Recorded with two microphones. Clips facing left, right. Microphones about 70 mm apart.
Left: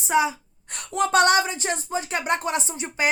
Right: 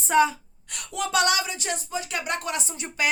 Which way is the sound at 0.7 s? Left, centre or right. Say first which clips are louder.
Left 5 dB; left.